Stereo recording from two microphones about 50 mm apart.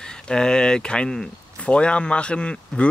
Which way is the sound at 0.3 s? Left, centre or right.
Centre.